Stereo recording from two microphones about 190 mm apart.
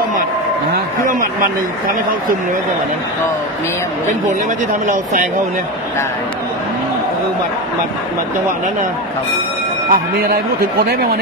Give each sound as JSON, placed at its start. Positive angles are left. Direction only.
{"t": 9.8, "sound": "speech", "side_deg": -50}